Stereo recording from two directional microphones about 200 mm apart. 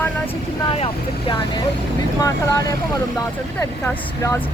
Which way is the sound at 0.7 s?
25° left (ahead or behind).